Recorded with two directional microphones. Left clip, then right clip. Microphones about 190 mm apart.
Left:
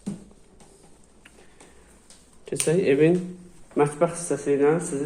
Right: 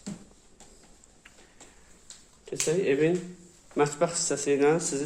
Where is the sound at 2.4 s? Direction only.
15° left (ahead or behind).